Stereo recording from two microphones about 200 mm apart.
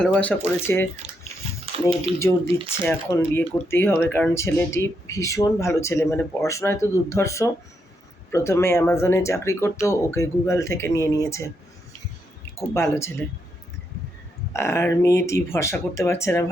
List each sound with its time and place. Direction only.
0.0 s speech: 5° left (ahead or behind)
1.2 s a sound: 30° right (ahead or behind)
2.1 s speech: 15° left (ahead or behind)
12.5 s speech: 15° left (ahead or behind)
14.5 s speech: 15° left (ahead or behind)